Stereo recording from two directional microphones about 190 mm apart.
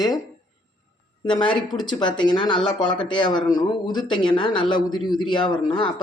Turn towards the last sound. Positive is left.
turn(degrees=25)  # may be behind; listen again after turning